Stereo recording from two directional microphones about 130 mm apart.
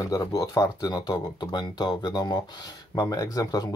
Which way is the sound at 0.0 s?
25° left (ahead or behind).